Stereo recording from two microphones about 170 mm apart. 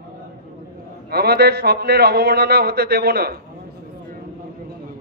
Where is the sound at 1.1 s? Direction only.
70° right (ahead or behind).